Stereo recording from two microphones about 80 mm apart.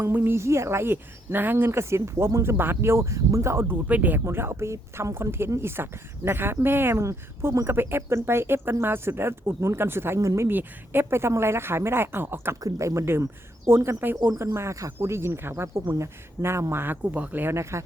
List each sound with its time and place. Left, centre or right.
0.0 s speech: right
3.7 s speech: centre
4.2 s speech: right
7.0 s speech: right
10.5 s speech: right
12.6 s speech: right